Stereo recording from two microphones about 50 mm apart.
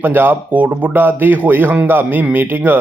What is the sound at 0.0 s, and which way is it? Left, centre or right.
Speech, right.